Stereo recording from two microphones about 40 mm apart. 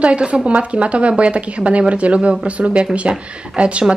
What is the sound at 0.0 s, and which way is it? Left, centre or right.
Speech, right.